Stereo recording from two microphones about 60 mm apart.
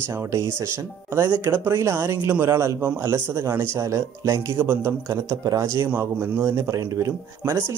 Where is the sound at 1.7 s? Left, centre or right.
Right.